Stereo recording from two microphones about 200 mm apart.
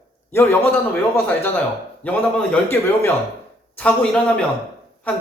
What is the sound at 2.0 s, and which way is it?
Speech, 10° left (ahead or behind).